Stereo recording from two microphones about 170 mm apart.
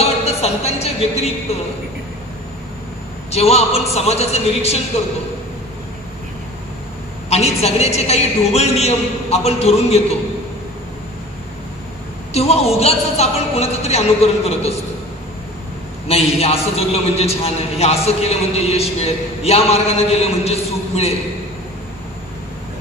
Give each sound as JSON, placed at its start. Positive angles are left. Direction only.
{"t": 0.0, "sound": "music", "side_deg": 40}
{"t": 3.3, "sound": "a man's voice", "side_deg": 40}
{"t": 7.2, "sound": "a man's voice", "side_deg": 40}
{"t": 12.4, "sound": "a man's voice", "side_deg": 40}
{"t": 16.1, "sound": "a man's voice", "side_deg": 35}